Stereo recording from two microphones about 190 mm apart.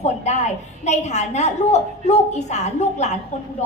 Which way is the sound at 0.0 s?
35° left (ahead or behind).